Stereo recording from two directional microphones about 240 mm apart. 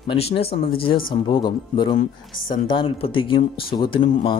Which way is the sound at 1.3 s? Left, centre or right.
Centre.